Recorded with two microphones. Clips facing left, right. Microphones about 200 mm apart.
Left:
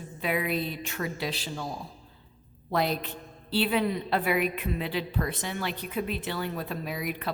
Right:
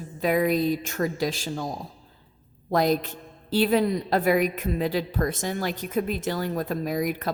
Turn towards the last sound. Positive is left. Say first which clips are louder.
# right 7 dB
turn(degrees=-45)  # may be behind; listen again after turning